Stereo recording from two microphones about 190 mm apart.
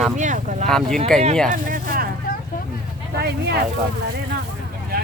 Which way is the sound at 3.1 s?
60° right (ahead or behind).